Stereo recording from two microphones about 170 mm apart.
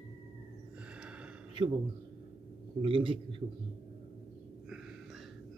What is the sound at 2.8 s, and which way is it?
Speech, 30° right (ahead or behind).